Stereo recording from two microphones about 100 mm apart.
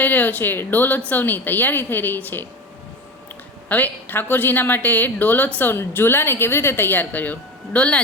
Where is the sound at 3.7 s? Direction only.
15° left (ahead or behind).